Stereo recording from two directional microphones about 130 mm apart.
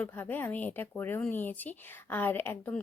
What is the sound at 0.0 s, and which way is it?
Speech, 15° left (ahead or behind).